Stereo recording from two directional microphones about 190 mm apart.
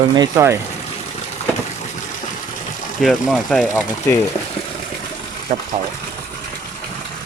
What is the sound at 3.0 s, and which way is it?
Speech, centre (ahead or behind).